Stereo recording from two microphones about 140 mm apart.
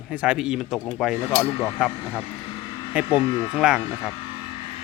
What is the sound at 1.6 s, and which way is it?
Speech, 15° left (ahead or behind).